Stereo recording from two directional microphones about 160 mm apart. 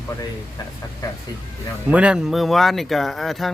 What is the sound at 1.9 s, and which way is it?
Speech, 5° right (ahead or behind).